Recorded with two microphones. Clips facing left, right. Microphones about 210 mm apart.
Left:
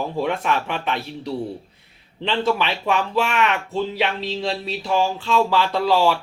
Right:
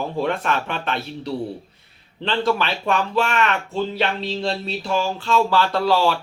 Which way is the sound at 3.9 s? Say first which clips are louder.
Even; centre (ahead or behind).